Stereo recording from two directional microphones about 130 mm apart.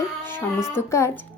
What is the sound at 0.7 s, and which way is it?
Speech, 20° left (ahead or behind).